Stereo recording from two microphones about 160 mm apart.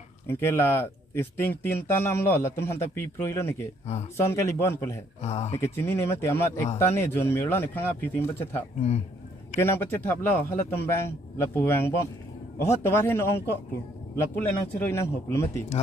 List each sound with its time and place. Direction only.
0.3 s a man's voice: 15° left (ahead or behind)
5.2 s speech: 45° left (ahead or behind)
5.5 s a man's voice: 15° left (ahead or behind)